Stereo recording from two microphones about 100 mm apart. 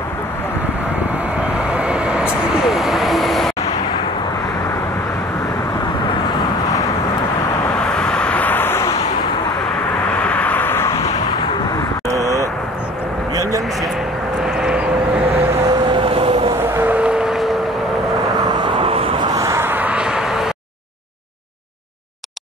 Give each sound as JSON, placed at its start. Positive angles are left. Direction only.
{"t": 1.7, "sound": "vehicle", "side_deg": -10}
{"t": 7.8, "sound": "vehicle", "side_deg": 10}
{"t": 10.2, "sound": "vehicle", "side_deg": 15}
{"t": 12.1, "sound": "vehicle", "side_deg": -35}
{"t": 14.4, "sound": "vehicle", "side_deg": -5}
{"t": 15.9, "sound": "vehicle", "side_deg": -70}
{"t": 16.5, "sound": "vehicle", "side_deg": -20}
{"t": 18.6, "sound": "vehicle", "side_deg": -70}
{"t": 19.3, "sound": "vehicle", "side_deg": -30}